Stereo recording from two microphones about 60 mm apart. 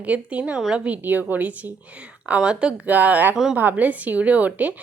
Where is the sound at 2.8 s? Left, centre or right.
Right.